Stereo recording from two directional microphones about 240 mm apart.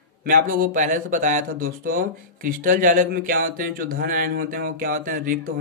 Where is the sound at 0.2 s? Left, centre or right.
Right.